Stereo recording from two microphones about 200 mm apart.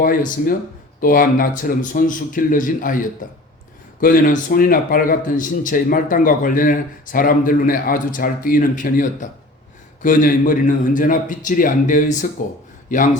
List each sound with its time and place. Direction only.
0.0 s a man's voice: 40° left (ahead or behind)